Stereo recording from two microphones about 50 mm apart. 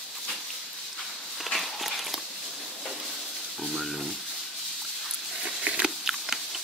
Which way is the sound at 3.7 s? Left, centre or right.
Centre.